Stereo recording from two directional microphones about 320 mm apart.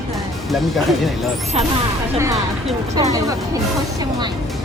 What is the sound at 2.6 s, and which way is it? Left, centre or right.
Speech, centre.